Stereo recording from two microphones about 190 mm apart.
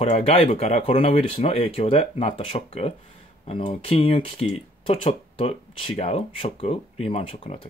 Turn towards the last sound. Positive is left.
turn(degrees=30)  # may be behind; listen again after turning